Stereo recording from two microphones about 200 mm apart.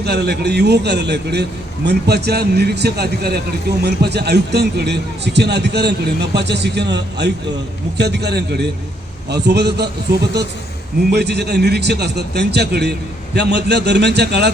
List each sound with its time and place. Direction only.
0.0 s a man's voice: 55° right (ahead or behind)
11.1 s a man's voice: 55° right (ahead or behind)